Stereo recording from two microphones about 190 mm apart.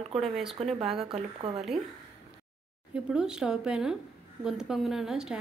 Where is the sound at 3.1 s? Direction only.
5° right (ahead or behind).